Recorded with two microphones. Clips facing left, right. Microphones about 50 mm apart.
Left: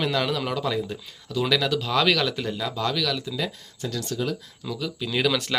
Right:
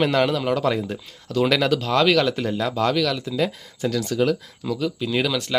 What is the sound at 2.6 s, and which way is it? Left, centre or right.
Speech, right.